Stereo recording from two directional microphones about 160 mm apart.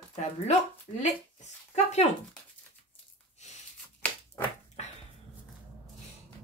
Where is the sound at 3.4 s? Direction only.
45° left (ahead or behind).